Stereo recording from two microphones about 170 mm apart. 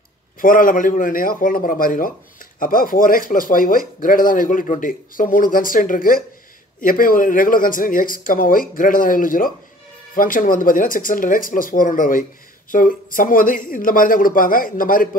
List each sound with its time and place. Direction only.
0.4 s speech: 55° left (ahead or behind)